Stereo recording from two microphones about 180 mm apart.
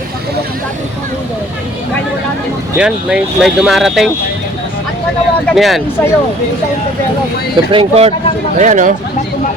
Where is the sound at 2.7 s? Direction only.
5° right (ahead or behind).